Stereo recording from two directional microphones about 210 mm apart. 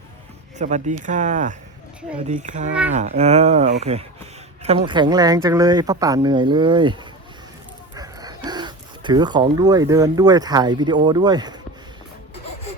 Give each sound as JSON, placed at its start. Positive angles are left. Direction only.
{"t": 0.6, "sound": "speech", "side_deg": -35}